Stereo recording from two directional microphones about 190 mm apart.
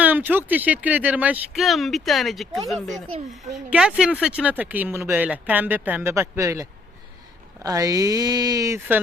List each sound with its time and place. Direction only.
0.0 s speech: 10° right (ahead or behind)